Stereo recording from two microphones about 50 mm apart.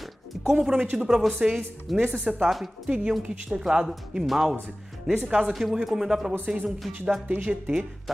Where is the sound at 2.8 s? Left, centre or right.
Right.